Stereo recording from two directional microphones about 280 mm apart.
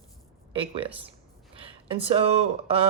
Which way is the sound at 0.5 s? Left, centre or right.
Centre.